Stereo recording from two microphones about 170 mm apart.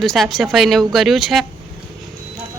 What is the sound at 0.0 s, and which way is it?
Speech, centre (ahead or behind).